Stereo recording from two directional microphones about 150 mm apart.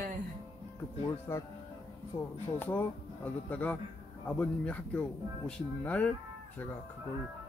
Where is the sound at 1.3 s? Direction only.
15° left (ahead or behind).